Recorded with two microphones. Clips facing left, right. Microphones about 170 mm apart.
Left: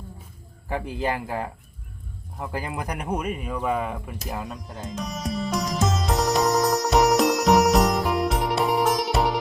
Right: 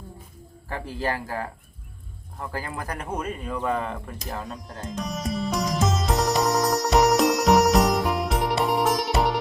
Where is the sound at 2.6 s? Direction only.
15° left (ahead or behind).